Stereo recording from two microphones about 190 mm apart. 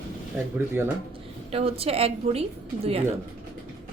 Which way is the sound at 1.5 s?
30° right (ahead or behind).